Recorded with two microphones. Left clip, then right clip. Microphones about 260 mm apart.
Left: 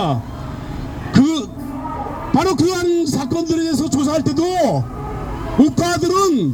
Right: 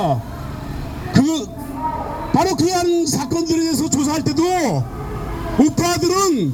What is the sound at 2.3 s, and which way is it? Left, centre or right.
A man's voice, left.